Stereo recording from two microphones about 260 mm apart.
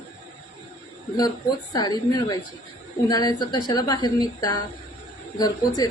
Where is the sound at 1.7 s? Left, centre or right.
Centre.